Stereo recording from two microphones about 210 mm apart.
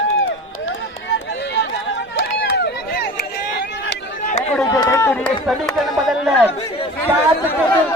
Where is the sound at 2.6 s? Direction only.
50° left (ahead or behind).